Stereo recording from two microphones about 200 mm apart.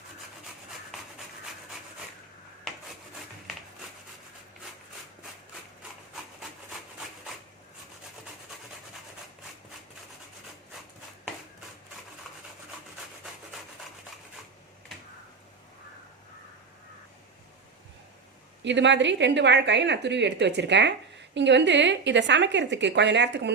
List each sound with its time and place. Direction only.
18.6 s a woman's voice: 65° right (ahead or behind)